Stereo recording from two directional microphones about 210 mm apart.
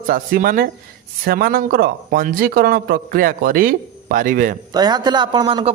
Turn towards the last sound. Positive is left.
turn(degrees=-20)  # may be behind; listen again after turning